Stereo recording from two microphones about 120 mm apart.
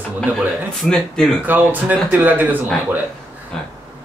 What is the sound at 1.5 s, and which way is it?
Speech, 15° right (ahead or behind).